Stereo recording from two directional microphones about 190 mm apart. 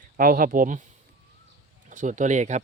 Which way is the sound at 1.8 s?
40° right (ahead or behind).